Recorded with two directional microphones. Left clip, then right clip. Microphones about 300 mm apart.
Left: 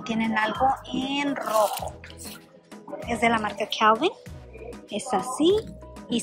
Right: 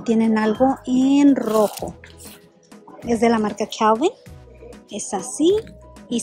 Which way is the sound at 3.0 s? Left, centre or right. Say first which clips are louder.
Right 5 dB; centre.